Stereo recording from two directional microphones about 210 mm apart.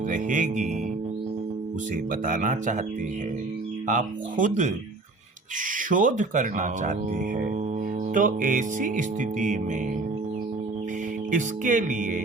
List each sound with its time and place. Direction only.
0.1 s music: 40° right (ahead or behind)
2.2 s music: 40° right (ahead or behind)
3.8 s music: 35° right (ahead or behind)
5.7 s music: 40° right (ahead or behind)
8.1 s music: 40° right (ahead or behind)
11.3 s music: 35° right (ahead or behind)